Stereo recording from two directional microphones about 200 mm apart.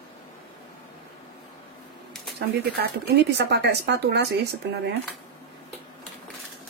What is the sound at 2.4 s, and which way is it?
Speech, 50° right (ahead or behind).